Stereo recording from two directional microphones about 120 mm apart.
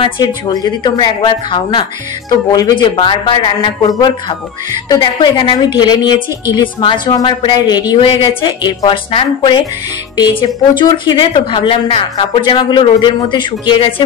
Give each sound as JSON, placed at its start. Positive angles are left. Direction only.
{"t": 0.2, "sound": "a woman's voice", "side_deg": 35}